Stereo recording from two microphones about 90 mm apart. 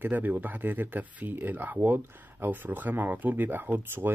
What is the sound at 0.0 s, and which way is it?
A man's voice, 20° right (ahead or behind).